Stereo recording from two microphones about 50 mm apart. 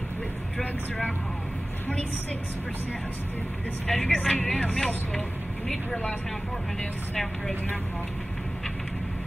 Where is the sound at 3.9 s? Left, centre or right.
Left.